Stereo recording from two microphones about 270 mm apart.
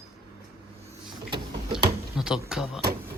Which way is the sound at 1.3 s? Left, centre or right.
Centre.